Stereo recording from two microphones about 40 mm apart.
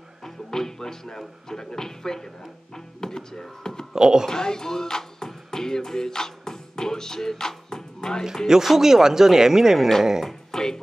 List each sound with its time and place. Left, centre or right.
0.2 s speech: centre
3.9 s speech: centre
4.3 s music: centre
8.5 s speech: centre
10.2 s speech: centre